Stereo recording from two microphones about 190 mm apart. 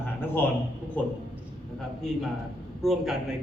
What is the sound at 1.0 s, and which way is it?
Speech, 10° left (ahead or behind).